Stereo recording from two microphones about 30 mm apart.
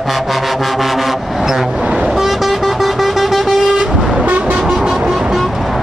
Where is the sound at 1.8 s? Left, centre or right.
Right.